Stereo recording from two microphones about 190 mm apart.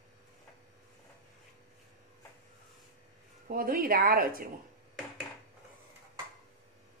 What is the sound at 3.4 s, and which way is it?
Speech, 50° right (ahead or behind).